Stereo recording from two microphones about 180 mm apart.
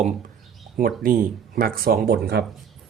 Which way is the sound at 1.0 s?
50° right (ahead or behind).